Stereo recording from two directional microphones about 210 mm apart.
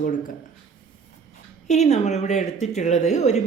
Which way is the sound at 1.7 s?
35° left (ahead or behind).